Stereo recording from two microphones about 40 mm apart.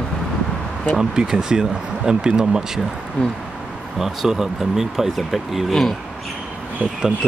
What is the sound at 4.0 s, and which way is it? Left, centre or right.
Speech, centre.